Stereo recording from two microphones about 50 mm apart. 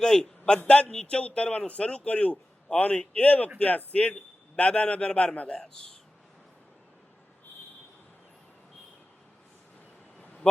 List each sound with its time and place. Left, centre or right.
0.2 s a man's voice: centre
10.4 s speech: centre